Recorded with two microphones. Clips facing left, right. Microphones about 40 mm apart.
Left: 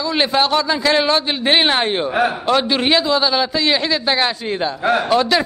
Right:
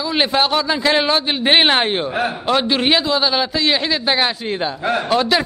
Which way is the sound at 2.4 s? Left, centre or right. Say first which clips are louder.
Even; centre.